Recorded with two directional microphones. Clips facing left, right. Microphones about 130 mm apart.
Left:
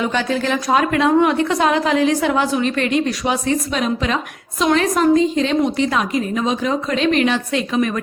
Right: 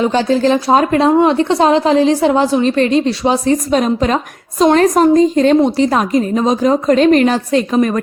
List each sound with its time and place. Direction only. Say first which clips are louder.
0.0 s a woman's voice: right 7 dB; 30° right (ahead or behind)